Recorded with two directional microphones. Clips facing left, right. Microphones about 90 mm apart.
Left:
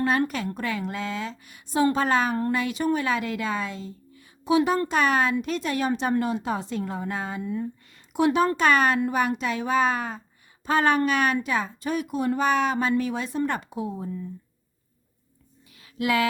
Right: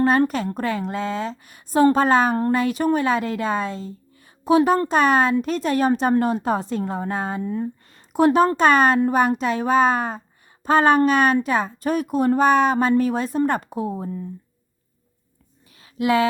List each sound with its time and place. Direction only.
0.0 s a woman's voice: 40° right (ahead or behind)
15.8 s music: 30° right (ahead or behind)